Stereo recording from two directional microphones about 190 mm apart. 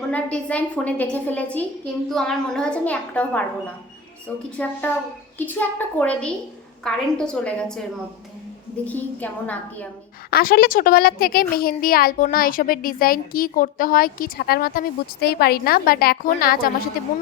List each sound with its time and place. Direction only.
0.1 s a woman's voice: 5° left (ahead or behind)
4.5 s a woman's voice: 10° left (ahead or behind)
8.9 s a woman's voice: 10° left (ahead or behind)
10.2 s a child's voice: 55° left (ahead or behind)